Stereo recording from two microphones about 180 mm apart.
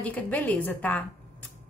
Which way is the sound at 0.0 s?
10° left (ahead or behind).